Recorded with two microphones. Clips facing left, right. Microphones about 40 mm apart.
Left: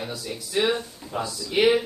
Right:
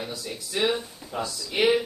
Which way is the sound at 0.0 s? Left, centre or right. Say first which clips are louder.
Left 2 dB; centre.